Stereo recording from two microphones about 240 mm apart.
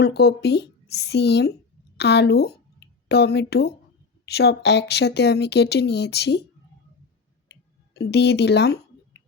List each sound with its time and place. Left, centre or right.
0.0 s speech: left
7.9 s speech: left